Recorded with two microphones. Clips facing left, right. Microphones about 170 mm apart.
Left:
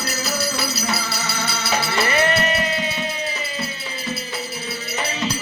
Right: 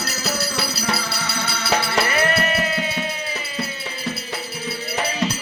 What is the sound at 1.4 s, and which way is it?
Music, 60° right (ahead or behind).